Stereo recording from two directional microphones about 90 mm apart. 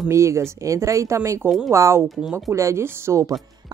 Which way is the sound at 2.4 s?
35° right (ahead or behind).